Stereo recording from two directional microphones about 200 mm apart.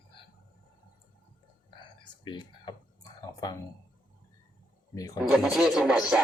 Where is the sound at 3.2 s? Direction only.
20° left (ahead or behind).